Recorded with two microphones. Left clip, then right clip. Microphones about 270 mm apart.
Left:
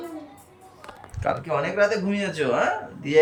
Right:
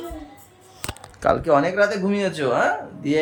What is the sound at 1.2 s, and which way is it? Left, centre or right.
Speech, right.